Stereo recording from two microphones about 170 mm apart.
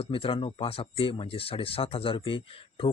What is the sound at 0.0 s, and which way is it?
Speech, 30° left (ahead or behind).